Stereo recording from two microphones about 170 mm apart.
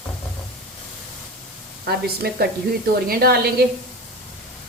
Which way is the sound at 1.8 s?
65° right (ahead or behind).